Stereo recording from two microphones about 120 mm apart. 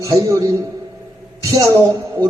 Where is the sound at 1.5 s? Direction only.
30° right (ahead or behind).